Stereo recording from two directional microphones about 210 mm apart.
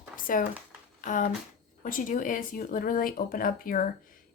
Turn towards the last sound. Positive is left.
turn(degrees=40)  # may be behind; listen again after turning